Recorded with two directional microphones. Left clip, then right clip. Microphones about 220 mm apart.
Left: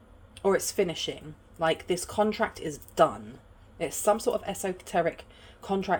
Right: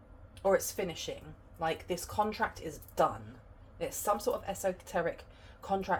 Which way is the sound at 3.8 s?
55° left (ahead or behind).